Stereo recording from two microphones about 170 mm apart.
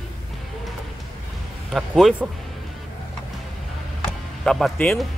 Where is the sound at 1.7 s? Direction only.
Centre (ahead or behind).